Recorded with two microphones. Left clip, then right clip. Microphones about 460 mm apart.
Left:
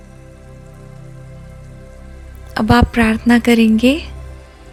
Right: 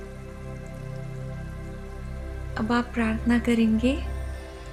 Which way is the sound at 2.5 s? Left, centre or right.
Left.